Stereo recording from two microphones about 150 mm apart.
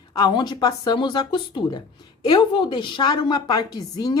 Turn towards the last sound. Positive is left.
turn(degrees=25)  # may be behind; listen again after turning